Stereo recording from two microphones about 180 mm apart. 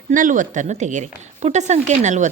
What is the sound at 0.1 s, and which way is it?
A woman's voice, 45° right (ahead or behind).